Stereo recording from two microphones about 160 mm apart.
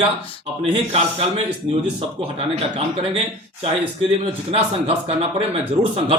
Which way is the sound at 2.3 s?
40° right (ahead or behind).